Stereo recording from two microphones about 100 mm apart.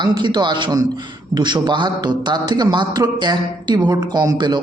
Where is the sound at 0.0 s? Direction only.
45° right (ahead or behind).